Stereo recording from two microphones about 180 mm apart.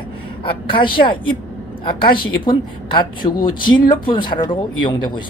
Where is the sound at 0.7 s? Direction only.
25° left (ahead or behind).